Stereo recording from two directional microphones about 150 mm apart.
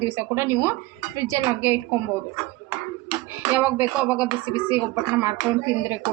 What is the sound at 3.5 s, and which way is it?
Speech, 10° right (ahead or behind).